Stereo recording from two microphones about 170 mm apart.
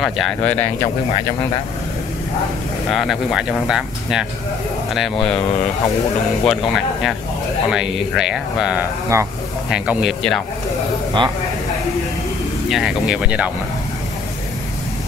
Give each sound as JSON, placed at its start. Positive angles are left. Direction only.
{"t": 0.0, "sound": "speech", "side_deg": 5}
{"t": 2.9, "sound": "speech", "side_deg": 0}
{"t": 6.4, "sound": "speech", "side_deg": 0}
{"t": 9.1, "sound": "speech", "side_deg": -15}
{"t": 9.7, "sound": "speech", "side_deg": -5}
{"t": 12.6, "sound": "speech", "side_deg": -5}